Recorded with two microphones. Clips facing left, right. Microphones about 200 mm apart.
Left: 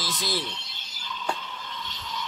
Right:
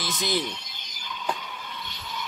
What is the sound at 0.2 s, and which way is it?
Speech, 20° right (ahead or behind).